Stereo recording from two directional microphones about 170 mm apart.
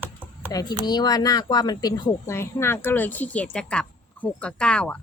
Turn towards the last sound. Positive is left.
turn(degrees=5)  # may be behind; listen again after turning